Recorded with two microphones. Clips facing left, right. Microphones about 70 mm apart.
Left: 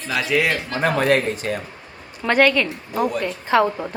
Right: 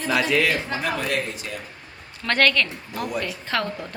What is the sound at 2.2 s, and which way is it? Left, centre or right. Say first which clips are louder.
Speech: left 4 dB; centre.